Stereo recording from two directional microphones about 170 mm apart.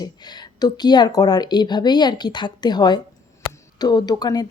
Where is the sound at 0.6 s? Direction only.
25° left (ahead or behind).